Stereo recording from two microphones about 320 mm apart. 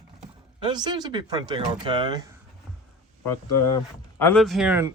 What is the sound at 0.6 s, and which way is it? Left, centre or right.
Speech, centre.